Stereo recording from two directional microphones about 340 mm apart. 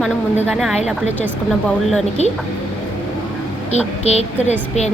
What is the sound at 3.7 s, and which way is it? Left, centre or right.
A woman's voice, centre.